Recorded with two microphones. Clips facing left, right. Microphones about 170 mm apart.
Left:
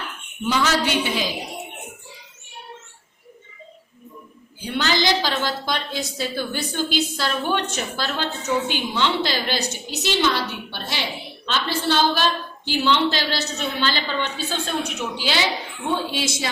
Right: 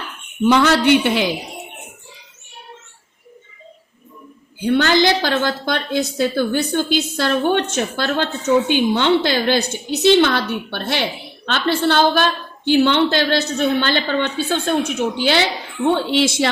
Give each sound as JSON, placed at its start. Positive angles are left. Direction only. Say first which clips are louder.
{"t": 0.4, "sound": "a woman's voice", "louder": "right 8 dB", "side_deg": -60}
{"t": 4.6, "sound": "a woman's voice", "louder": "right 7 dB", "side_deg": -55}
{"t": 15.9, "sound": "a woman's voice", "louder": "right 7 dB", "side_deg": -70}